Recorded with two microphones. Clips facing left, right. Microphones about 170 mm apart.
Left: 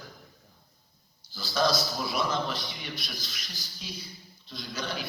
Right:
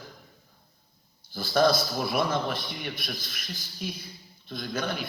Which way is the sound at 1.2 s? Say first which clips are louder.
Right 5 dB; 55° right (ahead or behind).